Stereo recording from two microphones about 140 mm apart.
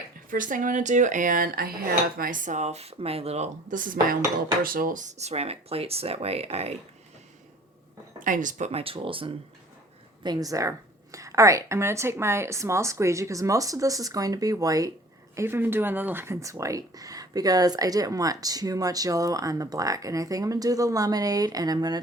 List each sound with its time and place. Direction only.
0.3 s dishes: 70° right (ahead or behind)
4.6 s speech: 90° right; by 6.7 s 45° right (ahead or behind)
8.2 s speech: 70° right (ahead or behind); by 9.3 s 40° right (ahead or behind)
10.2 s speech: 25° right (ahead or behind)